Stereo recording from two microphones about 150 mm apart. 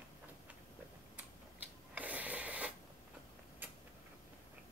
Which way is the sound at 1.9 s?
10° right (ahead or behind).